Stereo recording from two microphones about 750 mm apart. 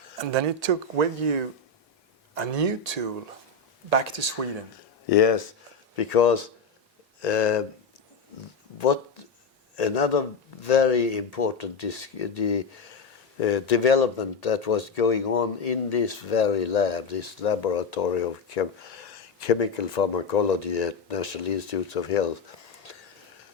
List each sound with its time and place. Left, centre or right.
0.3 s speech: right
5.0 s speech: left
8.8 s speech: left
22.9 s a sound: left